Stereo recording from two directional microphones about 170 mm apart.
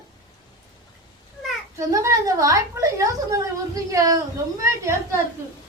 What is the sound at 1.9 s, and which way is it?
A woman's voice, 20° right (ahead or behind).